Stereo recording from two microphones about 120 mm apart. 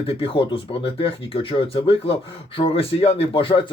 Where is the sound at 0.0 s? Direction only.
50° left (ahead or behind).